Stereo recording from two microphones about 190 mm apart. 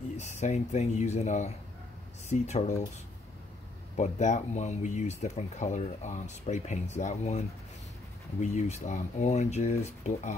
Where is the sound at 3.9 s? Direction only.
40° left (ahead or behind).